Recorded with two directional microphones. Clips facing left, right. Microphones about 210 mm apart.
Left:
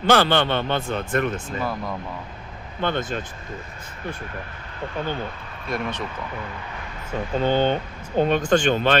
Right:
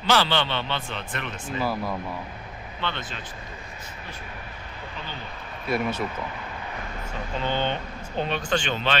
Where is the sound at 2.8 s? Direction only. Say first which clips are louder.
Left 8 dB; 45° left (ahead or behind).